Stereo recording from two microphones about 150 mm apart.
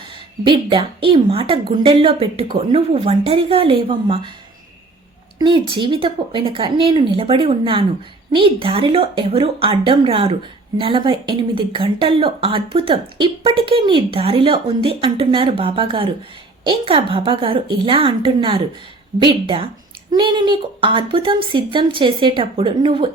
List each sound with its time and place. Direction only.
0.4 s a woman's voice: 35° right (ahead or behind)
5.4 s a woman's voice: 35° right (ahead or behind)